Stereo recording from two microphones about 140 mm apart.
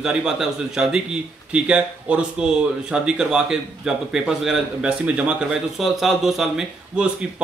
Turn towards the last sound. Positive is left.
turn(degrees=-5)  # may be behind; listen again after turning